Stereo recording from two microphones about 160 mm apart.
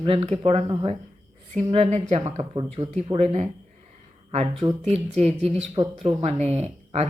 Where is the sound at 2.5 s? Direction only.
30° right (ahead or behind).